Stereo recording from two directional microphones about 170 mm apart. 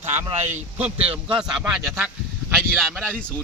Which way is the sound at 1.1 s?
10° right (ahead or behind).